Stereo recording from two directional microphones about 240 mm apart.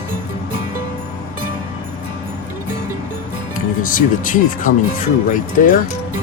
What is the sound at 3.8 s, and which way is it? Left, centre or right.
Speech, left.